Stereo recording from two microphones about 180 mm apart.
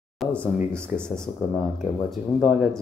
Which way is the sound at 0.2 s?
5° left (ahead or behind).